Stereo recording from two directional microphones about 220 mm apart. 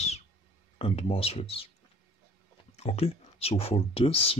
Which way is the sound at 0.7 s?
25° left (ahead or behind).